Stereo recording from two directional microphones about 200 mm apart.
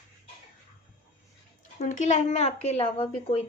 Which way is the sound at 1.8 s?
35° left (ahead or behind).